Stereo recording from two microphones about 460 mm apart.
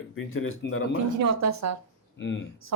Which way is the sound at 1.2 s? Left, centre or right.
Right.